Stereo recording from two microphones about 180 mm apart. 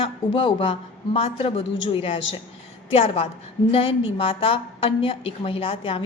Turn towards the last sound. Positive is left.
turn(degrees=30)  # may be behind; listen again after turning